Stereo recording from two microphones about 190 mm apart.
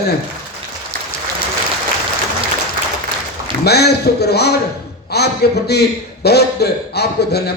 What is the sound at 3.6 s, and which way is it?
A man's voice, 60° left (ahead or behind).